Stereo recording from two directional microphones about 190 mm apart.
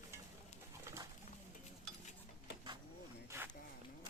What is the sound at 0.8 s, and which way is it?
Bird, 15° right (ahead or behind).